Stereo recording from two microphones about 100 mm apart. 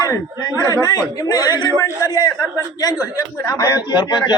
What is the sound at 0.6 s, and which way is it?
A man's voice, 35° left (ahead or behind).